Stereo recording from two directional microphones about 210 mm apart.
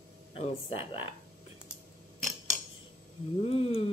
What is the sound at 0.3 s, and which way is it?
Speech, 25° left (ahead or behind).